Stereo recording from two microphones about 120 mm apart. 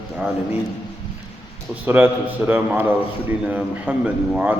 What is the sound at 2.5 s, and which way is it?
Speech, 15° right (ahead or behind).